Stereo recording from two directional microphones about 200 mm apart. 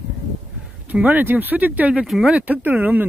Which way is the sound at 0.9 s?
10° right (ahead or behind).